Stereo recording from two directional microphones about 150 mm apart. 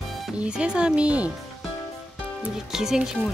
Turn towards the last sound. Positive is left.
turn(degrees=-5)  # may be behind; listen again after turning